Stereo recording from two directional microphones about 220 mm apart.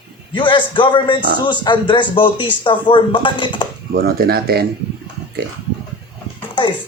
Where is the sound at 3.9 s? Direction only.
45° right (ahead or behind).